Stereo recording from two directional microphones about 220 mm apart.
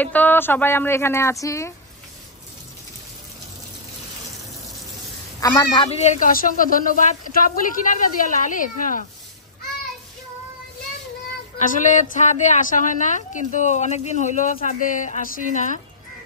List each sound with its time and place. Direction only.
0.0 s speech: 5° left (ahead or behind)
5.4 s speech: 15° left (ahead or behind)
5.9 s speech: 30° left (ahead or behind)
11.5 s speech: 35° left (ahead or behind)